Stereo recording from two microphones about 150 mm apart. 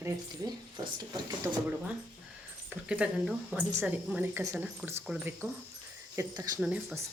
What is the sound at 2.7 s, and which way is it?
Speech, 10° right (ahead or behind).